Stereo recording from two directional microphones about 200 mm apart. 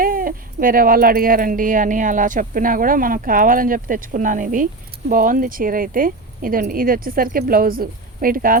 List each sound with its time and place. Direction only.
0.0 s speech: 45° right (ahead or behind)